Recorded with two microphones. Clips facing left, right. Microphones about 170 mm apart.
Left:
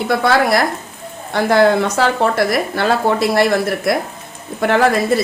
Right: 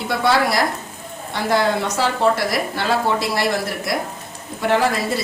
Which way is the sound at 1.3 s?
55° left (ahead or behind).